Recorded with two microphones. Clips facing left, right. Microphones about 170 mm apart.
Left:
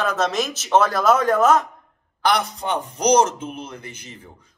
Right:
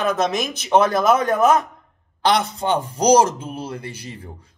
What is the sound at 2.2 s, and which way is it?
Speech, 30° right (ahead or behind).